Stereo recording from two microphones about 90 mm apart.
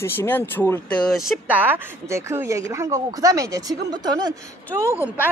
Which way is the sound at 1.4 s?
20° right (ahead or behind).